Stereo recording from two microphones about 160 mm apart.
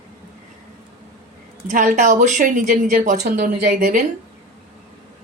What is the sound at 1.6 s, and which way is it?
A woman's voice, 55° right (ahead or behind).